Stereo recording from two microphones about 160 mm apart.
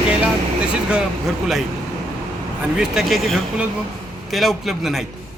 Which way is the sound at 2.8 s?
Centre (ahead or behind).